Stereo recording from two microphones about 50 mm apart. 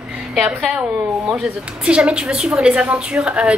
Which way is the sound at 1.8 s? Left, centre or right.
Right.